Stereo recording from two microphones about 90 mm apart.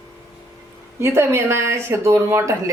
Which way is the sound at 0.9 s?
30° right (ahead or behind).